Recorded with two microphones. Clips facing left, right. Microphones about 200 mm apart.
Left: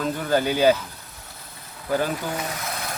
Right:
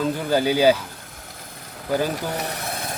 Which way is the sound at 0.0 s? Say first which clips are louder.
Right 2 dB; 10° right (ahead or behind).